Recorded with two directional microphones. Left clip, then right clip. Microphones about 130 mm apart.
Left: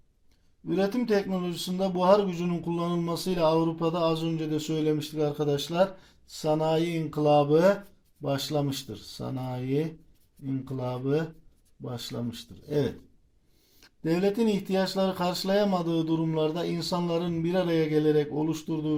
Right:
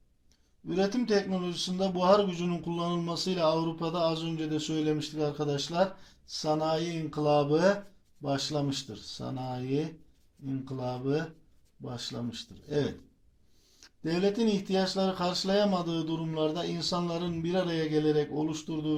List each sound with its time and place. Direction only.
0.7 s speech: 55° left (ahead or behind)